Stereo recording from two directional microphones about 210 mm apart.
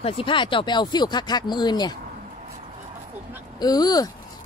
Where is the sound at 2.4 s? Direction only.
35° right (ahead or behind).